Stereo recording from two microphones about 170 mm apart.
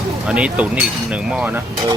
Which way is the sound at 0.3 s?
5° right (ahead or behind).